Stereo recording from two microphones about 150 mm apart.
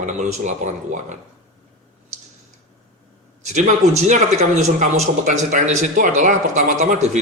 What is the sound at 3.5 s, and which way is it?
Speech, 50° right (ahead or behind).